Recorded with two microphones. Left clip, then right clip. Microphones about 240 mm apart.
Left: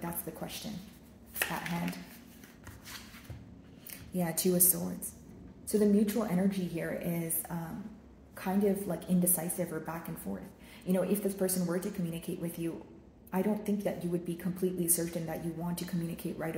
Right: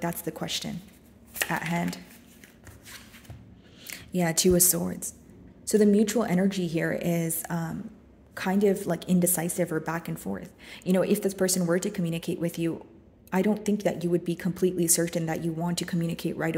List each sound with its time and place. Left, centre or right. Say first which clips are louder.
0.0 s speech: right 8 dB; right
3.8 s speech: right 8 dB; right